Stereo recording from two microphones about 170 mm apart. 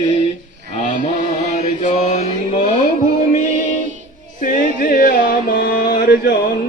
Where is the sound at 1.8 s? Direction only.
40° left (ahead or behind).